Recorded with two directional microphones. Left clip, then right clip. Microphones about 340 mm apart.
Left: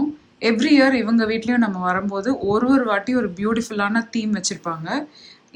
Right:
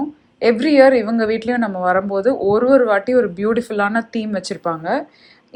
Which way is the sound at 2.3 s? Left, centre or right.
Centre.